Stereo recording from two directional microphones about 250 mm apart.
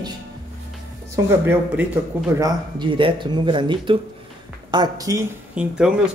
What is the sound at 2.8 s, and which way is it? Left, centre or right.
Speech, centre.